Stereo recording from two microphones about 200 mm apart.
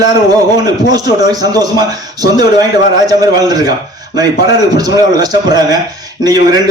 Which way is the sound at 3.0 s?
20° right (ahead or behind).